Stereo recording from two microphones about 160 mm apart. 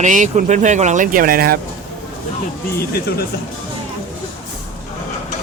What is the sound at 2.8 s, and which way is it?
Speech, 80° left.